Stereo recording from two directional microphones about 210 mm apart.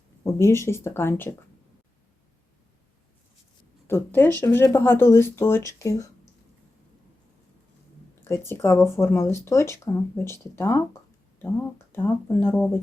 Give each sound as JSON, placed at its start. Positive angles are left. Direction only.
{"t": 0.3, "sound": "speech", "side_deg": 15}
{"t": 3.8, "sound": "speech", "side_deg": 10}
{"t": 8.2, "sound": "speech", "side_deg": 10}
{"t": 11.9, "sound": "speech", "side_deg": 10}